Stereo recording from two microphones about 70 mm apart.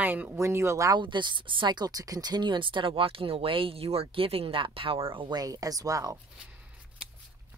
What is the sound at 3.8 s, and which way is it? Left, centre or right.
Speech, right.